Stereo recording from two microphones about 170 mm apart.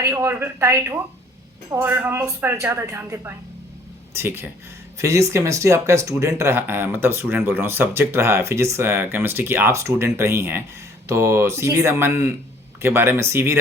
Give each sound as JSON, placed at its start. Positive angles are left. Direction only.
{"t": 0.0, "sound": "speech", "side_deg": -15}